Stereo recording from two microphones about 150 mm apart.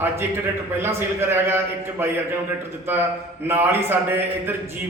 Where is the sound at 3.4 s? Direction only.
15° right (ahead or behind).